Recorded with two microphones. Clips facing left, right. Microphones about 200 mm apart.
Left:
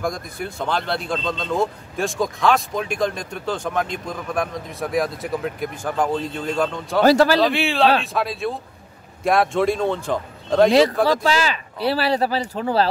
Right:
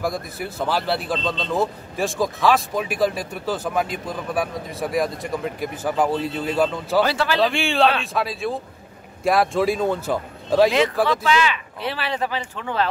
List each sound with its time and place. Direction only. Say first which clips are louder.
0.0 s speech: even; 5° right (ahead or behind)
7.0 s speech: left 6 dB; 40° left (ahead or behind)
7.3 s speech: left 1 dB; centre (ahead or behind)
11.1 s speech: left 1 dB; 35° left (ahead or behind)